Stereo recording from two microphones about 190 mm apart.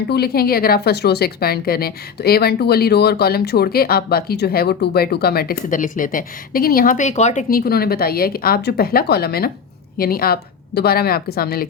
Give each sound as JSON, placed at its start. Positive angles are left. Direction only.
{"t": 0.1, "sound": "a woman's voice", "side_deg": 55}
{"t": 7.5, "sound": "a woman's voice", "side_deg": 50}